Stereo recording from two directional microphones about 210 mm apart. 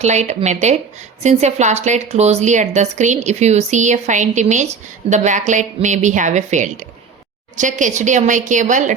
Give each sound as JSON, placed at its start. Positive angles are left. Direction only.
{"t": 0.0, "sound": "a woman's voice", "side_deg": -35}